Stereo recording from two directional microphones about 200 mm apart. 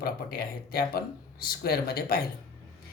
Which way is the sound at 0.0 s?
50° left (ahead or behind).